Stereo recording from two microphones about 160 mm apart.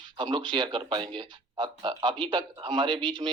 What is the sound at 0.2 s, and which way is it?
Speech, 30° right (ahead or behind).